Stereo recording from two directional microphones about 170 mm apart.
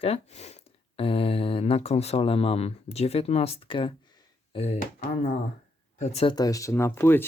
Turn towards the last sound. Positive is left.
turn(degrees=15)  # may be behind; listen again after turning